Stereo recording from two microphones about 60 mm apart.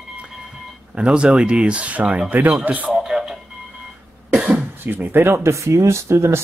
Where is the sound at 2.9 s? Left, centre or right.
Centre.